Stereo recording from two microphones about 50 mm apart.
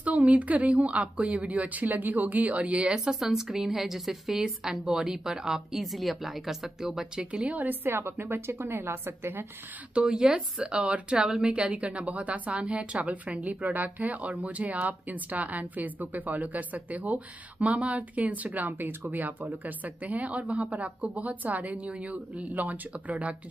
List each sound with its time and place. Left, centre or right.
0.0 s a woman's voice: right
3.1 s a woman's voice: centre
7.4 s speech: right
7.8 s a woman's voice: right
9.9 s a woman's voice: centre
22.4 s speech: right